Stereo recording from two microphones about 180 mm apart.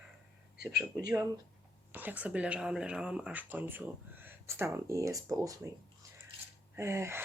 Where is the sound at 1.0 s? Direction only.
15° right (ahead or behind).